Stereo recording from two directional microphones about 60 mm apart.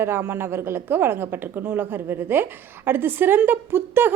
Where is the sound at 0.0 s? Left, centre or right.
Right.